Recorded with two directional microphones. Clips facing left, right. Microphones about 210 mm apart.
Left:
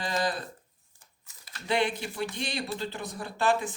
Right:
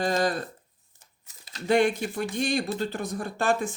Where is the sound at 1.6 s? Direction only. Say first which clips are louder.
Right 6 dB; 45° right (ahead or behind).